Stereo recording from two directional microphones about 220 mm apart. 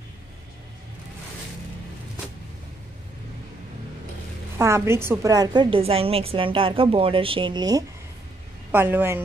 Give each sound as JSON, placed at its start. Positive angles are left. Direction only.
{"t": 4.6, "sound": "a woman's voice", "side_deg": -10}